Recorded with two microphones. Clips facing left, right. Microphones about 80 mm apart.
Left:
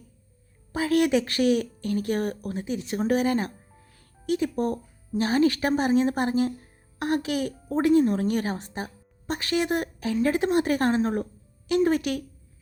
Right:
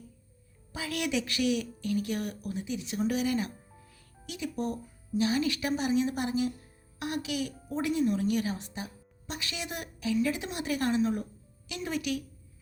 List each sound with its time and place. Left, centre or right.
0.7 s a woman's voice: left